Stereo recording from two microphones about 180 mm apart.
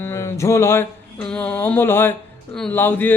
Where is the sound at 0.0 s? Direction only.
15° left (ahead or behind).